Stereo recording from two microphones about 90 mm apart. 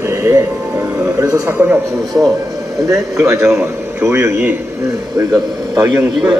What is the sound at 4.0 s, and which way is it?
Speech, 30° right (ahead or behind).